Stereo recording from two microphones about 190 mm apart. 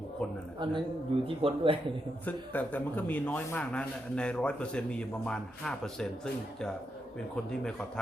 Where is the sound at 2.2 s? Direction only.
10° left (ahead or behind).